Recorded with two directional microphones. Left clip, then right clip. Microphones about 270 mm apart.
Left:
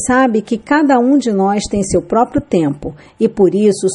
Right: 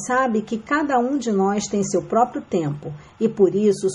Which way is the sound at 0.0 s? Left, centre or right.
Left.